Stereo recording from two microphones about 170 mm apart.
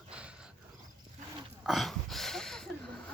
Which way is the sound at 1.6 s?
Centre (ahead or behind).